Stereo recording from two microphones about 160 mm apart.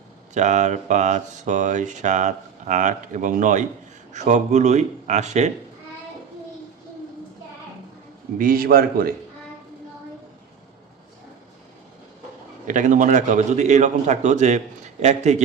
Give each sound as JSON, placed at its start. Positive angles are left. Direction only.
{"t": 0.3, "sound": "speech", "side_deg": -45}
{"t": 8.4, "sound": "a man's voice", "side_deg": -65}
{"t": 12.6, "sound": "speech", "side_deg": -50}